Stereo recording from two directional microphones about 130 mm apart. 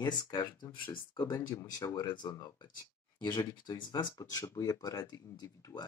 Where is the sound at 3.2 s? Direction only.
35° left (ahead or behind).